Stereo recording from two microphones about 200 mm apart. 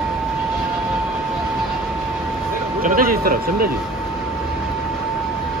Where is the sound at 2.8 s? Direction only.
45° right (ahead or behind).